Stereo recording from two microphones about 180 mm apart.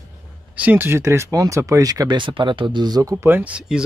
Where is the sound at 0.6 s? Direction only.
10° right (ahead or behind).